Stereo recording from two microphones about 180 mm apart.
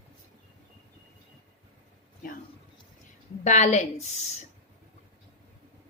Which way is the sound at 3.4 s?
40° left (ahead or behind).